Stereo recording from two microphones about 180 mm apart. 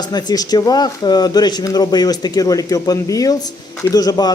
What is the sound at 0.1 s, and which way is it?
Speech, 20° left (ahead or behind).